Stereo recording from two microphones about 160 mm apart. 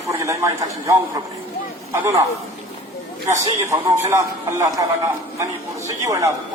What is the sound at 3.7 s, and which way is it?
A man's voice, 20° right (ahead or behind).